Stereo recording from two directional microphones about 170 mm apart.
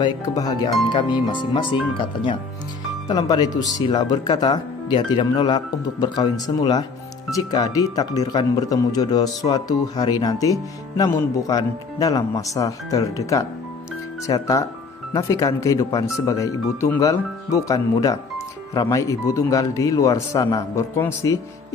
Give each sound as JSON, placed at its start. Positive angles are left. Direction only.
{"t": 0.0, "sound": "a man's voice", "side_deg": 20}